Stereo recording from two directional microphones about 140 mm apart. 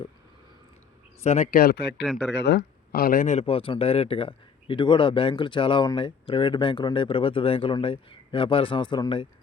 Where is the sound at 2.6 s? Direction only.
85° left; by 9.2 s 35° left (ahead or behind).